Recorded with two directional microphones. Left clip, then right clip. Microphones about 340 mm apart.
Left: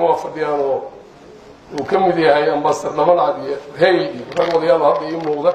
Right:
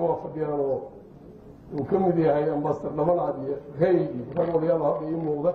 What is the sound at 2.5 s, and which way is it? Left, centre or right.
A man's voice, centre.